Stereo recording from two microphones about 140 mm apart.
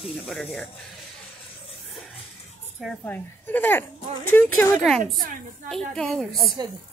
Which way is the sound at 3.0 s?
15° left (ahead or behind).